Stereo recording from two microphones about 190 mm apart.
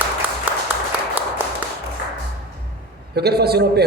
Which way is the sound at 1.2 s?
10° right (ahead or behind).